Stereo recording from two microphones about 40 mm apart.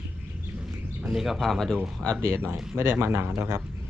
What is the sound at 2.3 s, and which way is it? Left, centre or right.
Speech, right.